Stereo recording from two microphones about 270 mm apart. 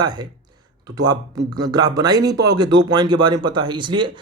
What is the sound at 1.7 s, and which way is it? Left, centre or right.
Speech, centre.